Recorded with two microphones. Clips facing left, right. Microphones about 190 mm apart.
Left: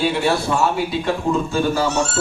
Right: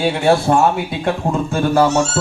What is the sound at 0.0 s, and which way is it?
Speech, 50° right (ahead or behind).